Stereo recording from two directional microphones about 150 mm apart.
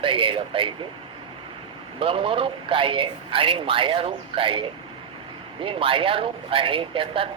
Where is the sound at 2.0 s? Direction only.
40° right (ahead or behind).